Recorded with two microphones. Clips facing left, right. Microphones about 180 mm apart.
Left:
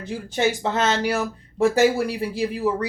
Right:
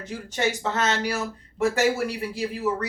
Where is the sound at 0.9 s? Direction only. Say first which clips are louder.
Left 4 dB; 35° left (ahead or behind).